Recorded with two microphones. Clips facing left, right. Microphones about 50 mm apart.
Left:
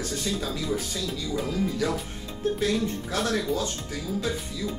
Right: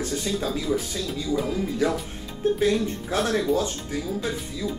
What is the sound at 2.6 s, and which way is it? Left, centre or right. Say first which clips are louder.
Speech: right 3 dB; right.